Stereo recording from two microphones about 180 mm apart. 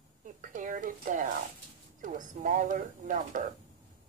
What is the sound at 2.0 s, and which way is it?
Speech, 45° right (ahead or behind).